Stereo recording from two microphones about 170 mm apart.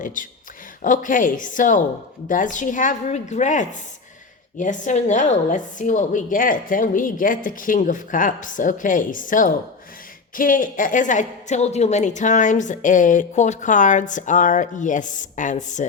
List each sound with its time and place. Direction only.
0.0 s a woman's voice: 50° left (ahead or behind)